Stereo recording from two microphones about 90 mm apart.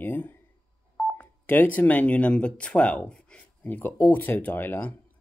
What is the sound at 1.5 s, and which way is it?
Speech, 20° left (ahead or behind).